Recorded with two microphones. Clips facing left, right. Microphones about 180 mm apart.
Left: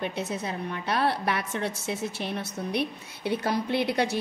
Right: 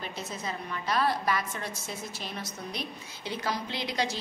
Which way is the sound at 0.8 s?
65° left (ahead or behind).